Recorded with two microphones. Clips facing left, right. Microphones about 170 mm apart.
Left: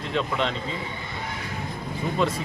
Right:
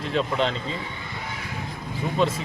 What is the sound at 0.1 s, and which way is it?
Speech, 35° right (ahead or behind).